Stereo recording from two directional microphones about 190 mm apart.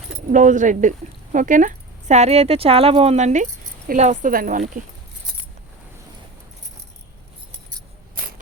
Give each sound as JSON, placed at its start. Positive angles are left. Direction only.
{"t": 0.3, "sound": "speech", "side_deg": -40}